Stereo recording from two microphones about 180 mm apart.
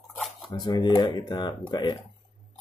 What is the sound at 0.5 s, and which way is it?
Speech, 25° left (ahead or behind).